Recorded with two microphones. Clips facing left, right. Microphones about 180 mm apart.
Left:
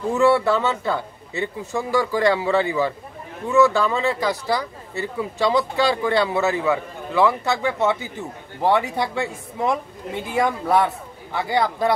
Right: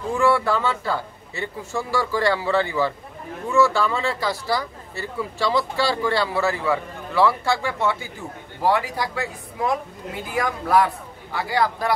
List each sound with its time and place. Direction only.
0.1 s speech: 25° left (ahead or behind)
10.3 s speech: 25° left (ahead or behind)